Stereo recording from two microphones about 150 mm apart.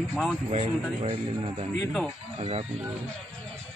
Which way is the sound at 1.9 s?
Centre (ahead or behind).